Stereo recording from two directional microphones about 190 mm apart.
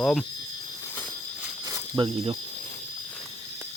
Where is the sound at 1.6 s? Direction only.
15° right (ahead or behind).